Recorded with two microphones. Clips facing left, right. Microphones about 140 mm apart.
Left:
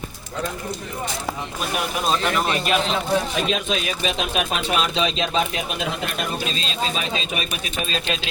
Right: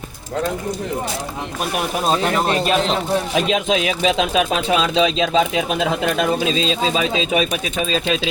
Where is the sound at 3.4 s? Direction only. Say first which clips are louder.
Right 5 dB; 90° right.